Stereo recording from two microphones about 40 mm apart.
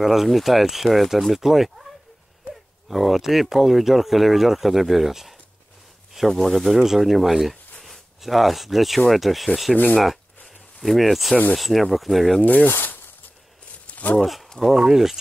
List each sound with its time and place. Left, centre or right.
0.0 s speech: centre
2.9 s speech: centre
6.3 s speech: centre
6.8 s speech: centre
9.9 s a sound: centre
11.5 s speech: centre
12.4 s speech: left
12.6 s a sound: left
13.8 s a sound: left
14.6 s speech: centre